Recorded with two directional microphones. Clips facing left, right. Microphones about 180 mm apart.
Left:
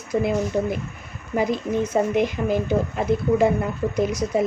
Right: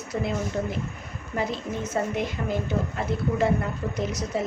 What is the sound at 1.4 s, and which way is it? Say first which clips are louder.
Speech: left 7 dB; 10° left (ahead or behind).